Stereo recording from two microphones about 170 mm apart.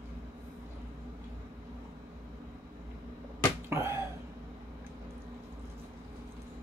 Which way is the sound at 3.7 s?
15° right (ahead or behind).